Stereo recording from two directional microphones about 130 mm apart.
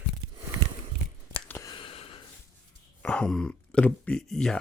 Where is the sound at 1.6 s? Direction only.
40° left (ahead or behind).